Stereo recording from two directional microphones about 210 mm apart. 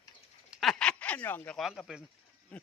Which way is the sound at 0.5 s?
Centre (ahead or behind).